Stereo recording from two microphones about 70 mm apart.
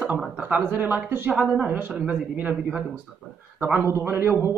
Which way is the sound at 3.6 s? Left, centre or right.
Right.